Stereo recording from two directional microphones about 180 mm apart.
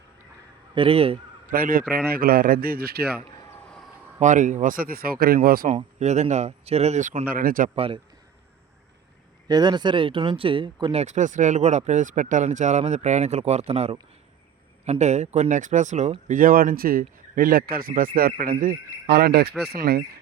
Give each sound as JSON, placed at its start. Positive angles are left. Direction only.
{"t": 0.7, "sound": "speech", "side_deg": -30}
{"t": 1.5, "sound": "a man's voice", "side_deg": -50}
{"t": 4.2, "sound": "speech", "side_deg": -45}
{"t": 5.6, "sound": "speech", "side_deg": -40}
{"t": 7.3, "sound": "speech", "side_deg": -50}
{"t": 7.8, "sound": "speech", "side_deg": -30}
{"t": 9.5, "sound": "speech", "side_deg": -25}
{"t": 11.0, "sound": "a man's voice", "side_deg": -40}